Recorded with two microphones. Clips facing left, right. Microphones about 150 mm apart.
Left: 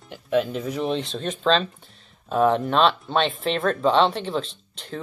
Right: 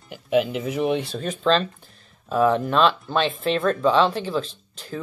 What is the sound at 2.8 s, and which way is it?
Speech, centre (ahead or behind).